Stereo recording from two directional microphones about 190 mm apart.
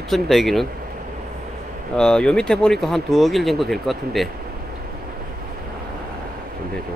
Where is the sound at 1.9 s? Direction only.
5° left (ahead or behind).